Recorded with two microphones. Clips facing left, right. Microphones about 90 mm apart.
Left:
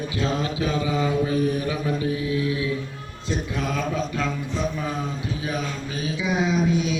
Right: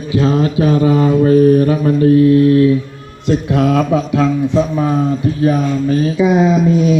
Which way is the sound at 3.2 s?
70° right (ahead or behind).